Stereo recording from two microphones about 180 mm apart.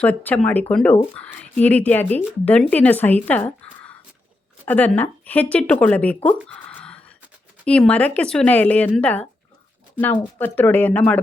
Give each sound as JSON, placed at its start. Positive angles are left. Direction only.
{"t": 0.0, "sound": "speech", "side_deg": 10}
{"t": 6.5, "sound": "a sound", "side_deg": 5}
{"t": 7.6, "sound": "speech", "side_deg": 5}